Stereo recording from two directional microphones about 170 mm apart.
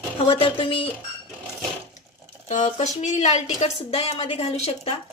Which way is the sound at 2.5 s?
45° left (ahead or behind).